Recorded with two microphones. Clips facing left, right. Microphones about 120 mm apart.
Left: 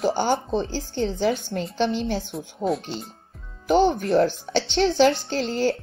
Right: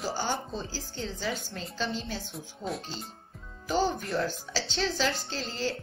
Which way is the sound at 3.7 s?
60° left (ahead or behind).